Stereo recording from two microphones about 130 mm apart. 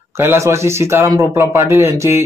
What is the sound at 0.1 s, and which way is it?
A man's voice, 20° right (ahead or behind).